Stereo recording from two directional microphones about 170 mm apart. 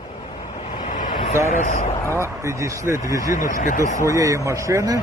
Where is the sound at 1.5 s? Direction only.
50° left (ahead or behind).